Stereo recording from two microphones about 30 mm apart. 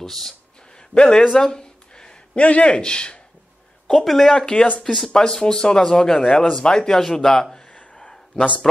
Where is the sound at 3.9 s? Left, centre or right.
Centre.